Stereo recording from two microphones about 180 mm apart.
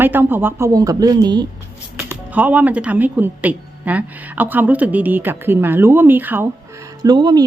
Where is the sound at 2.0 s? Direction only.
10° right (ahead or behind).